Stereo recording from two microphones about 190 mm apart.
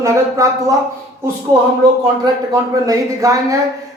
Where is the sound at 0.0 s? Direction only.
15° right (ahead or behind).